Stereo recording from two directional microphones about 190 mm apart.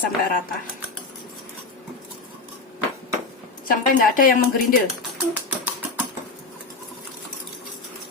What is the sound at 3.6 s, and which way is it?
Speech, 45° left (ahead or behind).